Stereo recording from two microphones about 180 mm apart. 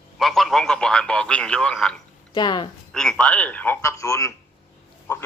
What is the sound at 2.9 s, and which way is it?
Speech, 5° left (ahead or behind).